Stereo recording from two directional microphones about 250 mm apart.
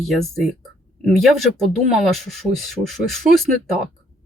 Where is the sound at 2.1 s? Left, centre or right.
Centre.